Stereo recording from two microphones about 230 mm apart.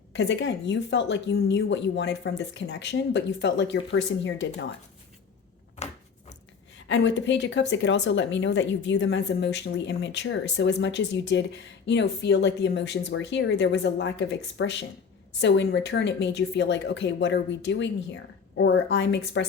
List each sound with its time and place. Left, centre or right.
0.1 s a woman's voice: left
6.7 s a woman's voice: left